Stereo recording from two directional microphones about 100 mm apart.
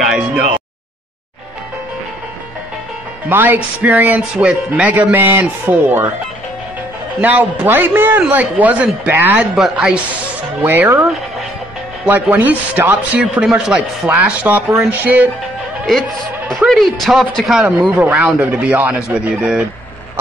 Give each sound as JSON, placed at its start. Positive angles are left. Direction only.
{"t": 0.0, "sound": "a sound", "side_deg": -10}
{"t": 3.3, "sound": "a man's voice", "side_deg": -20}
{"t": 7.2, "sound": "a man's voice", "side_deg": -15}
{"t": 9.6, "sound": "a man's voice", "side_deg": -5}
{"t": 10.6, "sound": "a man's voice", "side_deg": -20}
{"t": 12.1, "sound": "a man's voice", "side_deg": -20}
{"t": 14.0, "sound": "a man's voice", "side_deg": -15}
{"t": 16.4, "sound": "a man's voice", "side_deg": 0}